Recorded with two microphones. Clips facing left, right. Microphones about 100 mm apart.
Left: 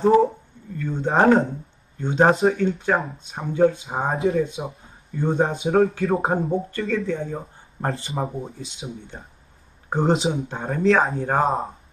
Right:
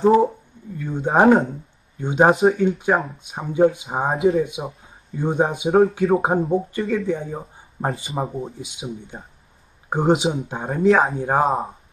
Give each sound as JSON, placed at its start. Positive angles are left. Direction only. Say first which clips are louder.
{"t": 0.0, "sound": "speech", "louder": "right 1 dB", "side_deg": 0}
{"t": 0.7, "sound": "speech", "louder": "right 2 dB", "side_deg": -15}
{"t": 1.2, "sound": "speech", "louder": "right 2 dB", "side_deg": -5}
{"t": 2.0, "sound": "speech", "louder": "right 2 dB", "side_deg": -15}
{"t": 4.1, "sound": "speech", "louder": "right 4 dB", "side_deg": 0}
{"t": 4.4, "sound": "speech", "louder": "right 1 dB", "side_deg": -15}
{"t": 6.0, "sound": "speech", "louder": "right 3 dB", "side_deg": 0}
{"t": 6.8, "sound": "speech", "louder": "right 2 dB", "side_deg": -30}
{"t": 7.1, "sound": "speech", "louder": "right 2 dB", "side_deg": -15}
{"t": 8.1, "sound": "speech", "louder": "right 2 dB", "side_deg": 0}
{"t": 8.5, "sound": "speech", "louder": "right 3 dB", "side_deg": -15}
{"t": 10.5, "sound": "speech", "louder": "right 3 dB", "side_deg": -15}